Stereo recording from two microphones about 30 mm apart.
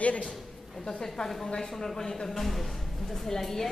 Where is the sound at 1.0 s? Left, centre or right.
Left.